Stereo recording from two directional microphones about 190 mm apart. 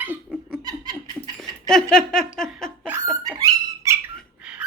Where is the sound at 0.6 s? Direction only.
20° right (ahead or behind).